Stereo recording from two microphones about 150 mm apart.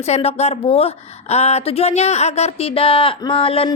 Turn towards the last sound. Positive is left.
turn(degrees=40)  # may be behind; listen again after turning